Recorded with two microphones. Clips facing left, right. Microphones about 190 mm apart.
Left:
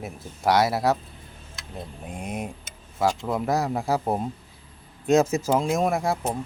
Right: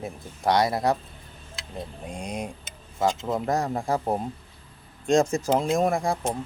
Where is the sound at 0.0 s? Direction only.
5° left (ahead or behind).